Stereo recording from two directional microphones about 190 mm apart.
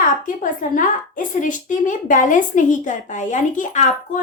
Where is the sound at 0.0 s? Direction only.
45° left (ahead or behind).